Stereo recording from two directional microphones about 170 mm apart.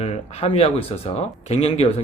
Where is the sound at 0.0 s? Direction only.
40° left (ahead or behind).